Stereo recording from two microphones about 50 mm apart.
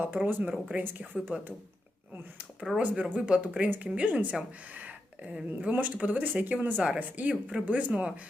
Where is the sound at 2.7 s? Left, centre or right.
Centre.